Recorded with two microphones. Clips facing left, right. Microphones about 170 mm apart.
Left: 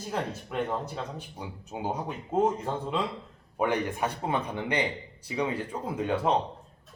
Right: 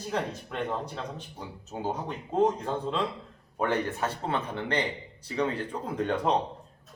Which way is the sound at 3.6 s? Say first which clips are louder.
Left 1 dB; 10° left (ahead or behind).